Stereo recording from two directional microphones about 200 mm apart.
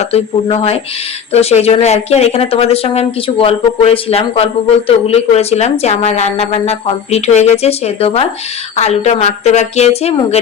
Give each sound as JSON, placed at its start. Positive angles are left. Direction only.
{"t": 0.0, "sound": "speech", "side_deg": 30}